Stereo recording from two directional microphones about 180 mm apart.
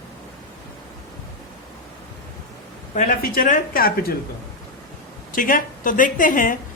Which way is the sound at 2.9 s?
50° left (ahead or behind).